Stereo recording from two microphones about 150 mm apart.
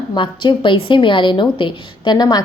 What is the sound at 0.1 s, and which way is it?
A woman's voice, 35° left (ahead or behind).